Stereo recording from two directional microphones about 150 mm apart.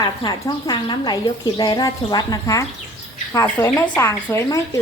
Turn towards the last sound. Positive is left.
turn(degrees=20)  # may be behind; listen again after turning